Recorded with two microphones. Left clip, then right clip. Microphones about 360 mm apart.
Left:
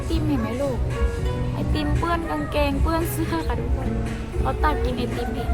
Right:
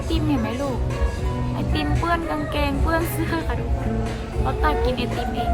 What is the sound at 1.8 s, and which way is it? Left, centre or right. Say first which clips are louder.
Music: right 2 dB; centre.